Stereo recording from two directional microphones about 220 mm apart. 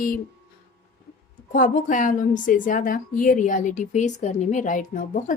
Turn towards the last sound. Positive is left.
turn(degrees=35)  # may be behind; listen again after turning